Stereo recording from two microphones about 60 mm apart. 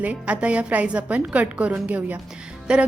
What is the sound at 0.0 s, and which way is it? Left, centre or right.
A woman's voice, right.